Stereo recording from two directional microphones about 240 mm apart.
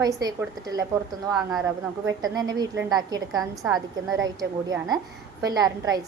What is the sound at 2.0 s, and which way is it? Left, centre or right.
A woman's voice, centre.